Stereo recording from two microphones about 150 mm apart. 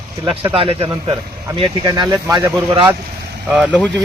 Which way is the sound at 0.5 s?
40° right (ahead or behind).